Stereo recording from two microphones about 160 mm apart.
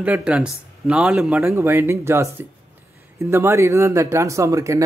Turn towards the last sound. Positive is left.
turn(degrees=-20)  # may be behind; listen again after turning